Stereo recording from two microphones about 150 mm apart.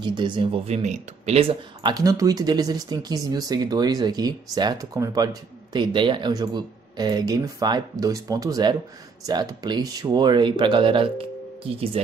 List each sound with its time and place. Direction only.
0.0 s speech: 30° right (ahead or behind)
0.8 s speech: 50° right (ahead or behind)